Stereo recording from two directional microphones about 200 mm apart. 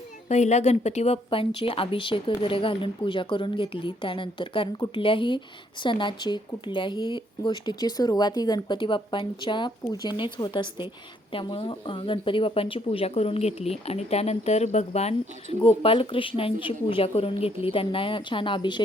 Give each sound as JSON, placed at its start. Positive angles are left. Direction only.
{"t": 0.3, "sound": "speech", "side_deg": 35}